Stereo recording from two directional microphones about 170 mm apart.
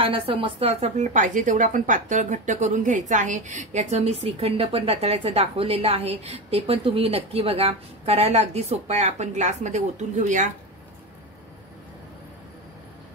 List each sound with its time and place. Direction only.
0.0 s a woman's voice: 30° right (ahead or behind); by 10.5 s 45° right (ahead or behind)